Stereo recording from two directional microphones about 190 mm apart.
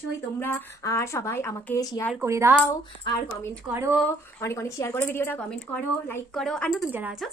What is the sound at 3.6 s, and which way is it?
Speech, 15° right (ahead or behind).